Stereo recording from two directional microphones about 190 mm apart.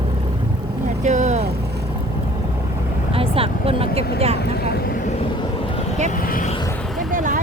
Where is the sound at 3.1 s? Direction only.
30° right (ahead or behind).